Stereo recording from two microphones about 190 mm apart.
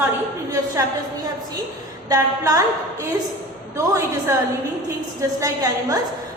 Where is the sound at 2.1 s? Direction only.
20° right (ahead or behind).